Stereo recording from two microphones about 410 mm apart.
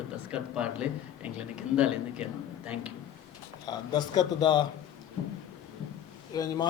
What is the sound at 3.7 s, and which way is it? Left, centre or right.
Speech, centre.